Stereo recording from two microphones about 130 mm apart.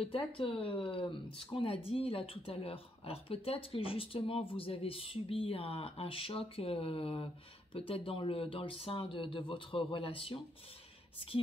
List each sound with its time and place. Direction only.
0.0 s speech: 45° left (ahead or behind)